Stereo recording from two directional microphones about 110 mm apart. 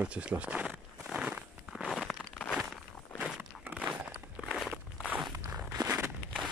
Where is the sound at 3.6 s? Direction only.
15° right (ahead or behind).